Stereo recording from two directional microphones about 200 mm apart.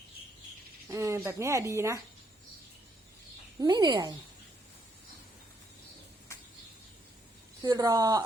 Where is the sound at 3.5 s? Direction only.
20° right (ahead or behind).